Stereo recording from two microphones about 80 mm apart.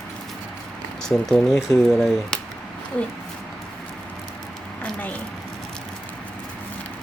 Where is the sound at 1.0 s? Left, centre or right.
Centre.